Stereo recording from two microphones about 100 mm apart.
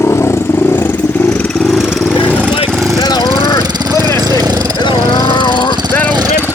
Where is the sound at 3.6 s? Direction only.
45° right (ahead or behind).